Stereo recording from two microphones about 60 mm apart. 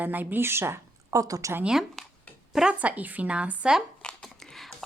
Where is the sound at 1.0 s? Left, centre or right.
Right.